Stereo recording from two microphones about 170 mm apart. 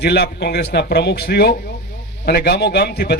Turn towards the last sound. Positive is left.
turn(degrees=70)  # may be behind; listen again after turning